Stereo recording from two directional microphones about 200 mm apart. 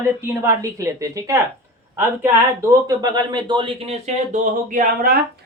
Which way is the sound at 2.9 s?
20° right (ahead or behind).